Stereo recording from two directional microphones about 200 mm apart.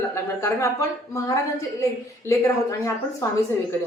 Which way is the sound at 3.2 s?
15° left (ahead or behind).